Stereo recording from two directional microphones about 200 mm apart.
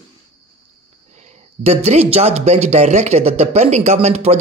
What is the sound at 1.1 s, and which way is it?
Speech, 35° right (ahead or behind).